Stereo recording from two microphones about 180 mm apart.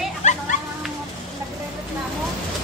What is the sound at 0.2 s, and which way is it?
Children playing, 40° left (ahead or behind).